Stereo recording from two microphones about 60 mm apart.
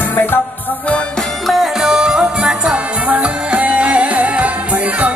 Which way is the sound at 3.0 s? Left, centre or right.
Right.